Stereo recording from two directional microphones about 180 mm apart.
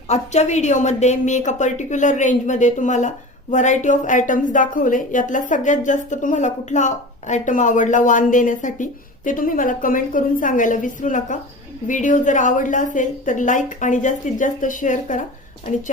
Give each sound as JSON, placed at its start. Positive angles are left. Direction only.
{"t": 0.1, "sound": "a woman's voice", "side_deg": 40}